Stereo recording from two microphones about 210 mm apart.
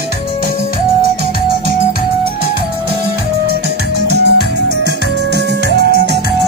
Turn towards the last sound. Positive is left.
turn(degrees=-50)  # may be behind; listen again after turning